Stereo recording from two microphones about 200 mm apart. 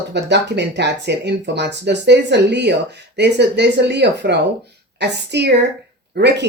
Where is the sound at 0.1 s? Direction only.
60° right (ahead or behind).